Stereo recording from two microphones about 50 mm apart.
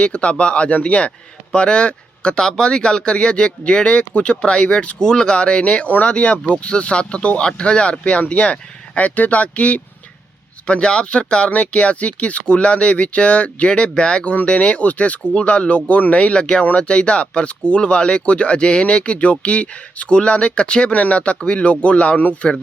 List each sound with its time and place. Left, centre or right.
0.0 s speech: left